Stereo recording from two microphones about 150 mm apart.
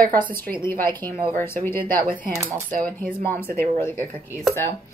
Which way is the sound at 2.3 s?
20° right (ahead or behind).